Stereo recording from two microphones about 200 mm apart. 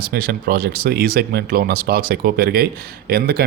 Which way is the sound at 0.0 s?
45° right (ahead or behind).